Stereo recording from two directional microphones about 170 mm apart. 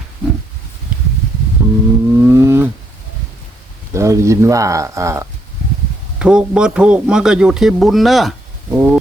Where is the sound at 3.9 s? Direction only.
15° right (ahead or behind).